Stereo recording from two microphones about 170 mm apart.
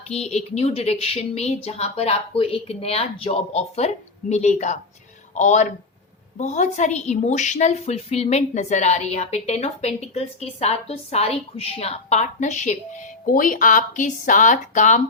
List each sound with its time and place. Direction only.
0.1 s a woman's voice: 40° left (ahead or behind)